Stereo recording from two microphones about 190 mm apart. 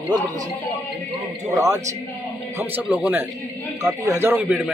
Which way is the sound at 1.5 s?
15° right (ahead or behind).